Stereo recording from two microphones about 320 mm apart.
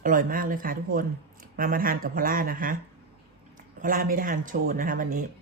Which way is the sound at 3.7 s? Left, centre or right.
Right.